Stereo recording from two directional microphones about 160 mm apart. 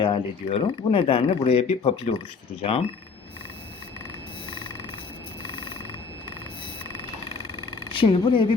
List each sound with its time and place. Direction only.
0.0 s speech: 30° left (ahead or behind)
5.4 s frog: 30° left (ahead or behind)
7.9 s a woman's voice: 35° left (ahead or behind)